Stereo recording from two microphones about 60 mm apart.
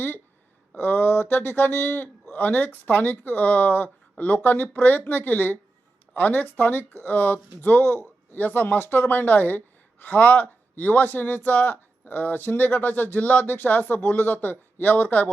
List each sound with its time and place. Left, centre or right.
0.8 s speech: left